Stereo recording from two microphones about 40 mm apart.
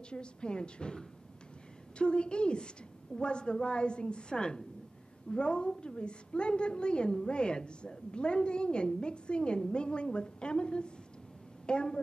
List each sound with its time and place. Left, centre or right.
0.1 s a woman's voice: left